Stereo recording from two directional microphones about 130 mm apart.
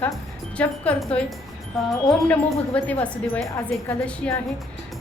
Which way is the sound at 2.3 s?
10° left (ahead or behind).